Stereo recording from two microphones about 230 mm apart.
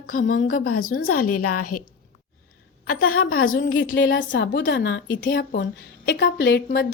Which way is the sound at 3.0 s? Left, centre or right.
Left.